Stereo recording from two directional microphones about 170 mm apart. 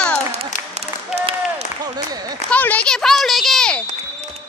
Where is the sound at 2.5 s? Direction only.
10° left (ahead or behind).